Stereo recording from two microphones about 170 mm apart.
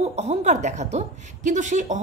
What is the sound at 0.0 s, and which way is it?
A woman's voice, 40° right (ahead or behind).